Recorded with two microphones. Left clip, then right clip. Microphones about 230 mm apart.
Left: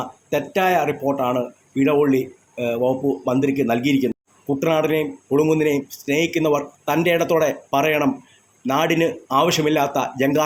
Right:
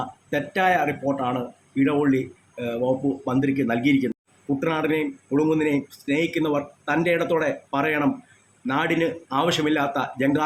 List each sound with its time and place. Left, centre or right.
0.3 s speech: centre